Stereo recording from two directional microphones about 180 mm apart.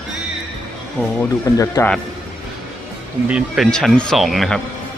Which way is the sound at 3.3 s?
5° right (ahead or behind).